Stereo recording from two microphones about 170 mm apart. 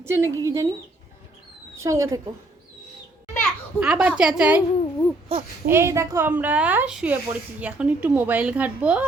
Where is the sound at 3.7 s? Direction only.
5° right (ahead or behind).